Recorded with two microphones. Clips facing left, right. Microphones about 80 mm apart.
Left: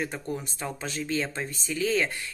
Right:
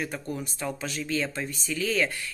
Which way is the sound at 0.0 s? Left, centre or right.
Left.